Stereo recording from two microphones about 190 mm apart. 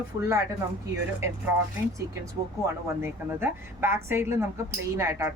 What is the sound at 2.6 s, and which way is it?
A woman's voice, 10° right (ahead or behind).